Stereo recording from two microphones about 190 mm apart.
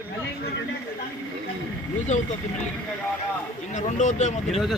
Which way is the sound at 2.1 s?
40° left (ahead or behind).